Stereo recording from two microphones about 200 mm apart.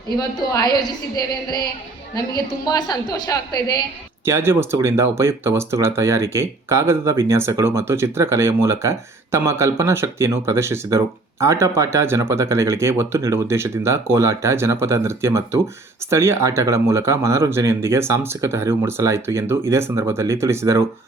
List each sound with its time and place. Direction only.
0.2 s a woman's voice: 20° left (ahead or behind)
4.3 s speech: 10° right (ahead or behind)